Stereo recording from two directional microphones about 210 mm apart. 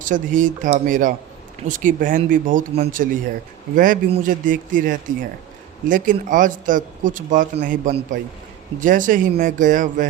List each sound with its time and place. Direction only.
0.0 s speech: 40° right (ahead or behind)